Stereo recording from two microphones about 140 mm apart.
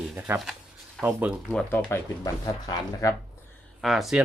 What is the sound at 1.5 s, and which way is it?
Speech, 10° left (ahead or behind).